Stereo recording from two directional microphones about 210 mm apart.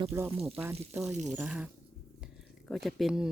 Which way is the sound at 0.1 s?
10° right (ahead or behind).